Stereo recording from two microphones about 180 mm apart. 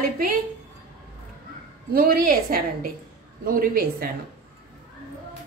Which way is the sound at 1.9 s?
55° right (ahead or behind).